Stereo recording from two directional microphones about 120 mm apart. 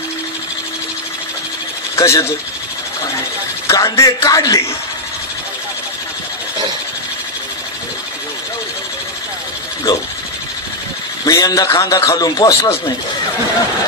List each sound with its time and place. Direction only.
2.0 s speech: 25° left (ahead or behind)
3.6 s a man's voice: 25° left (ahead or behind)
11.2 s a man's voice: 30° left (ahead or behind)